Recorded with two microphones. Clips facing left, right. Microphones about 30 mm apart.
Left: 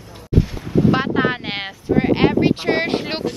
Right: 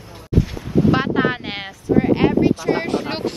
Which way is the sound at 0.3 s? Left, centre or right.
Centre.